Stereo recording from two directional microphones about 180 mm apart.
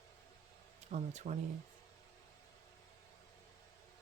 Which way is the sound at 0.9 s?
40° right (ahead or behind).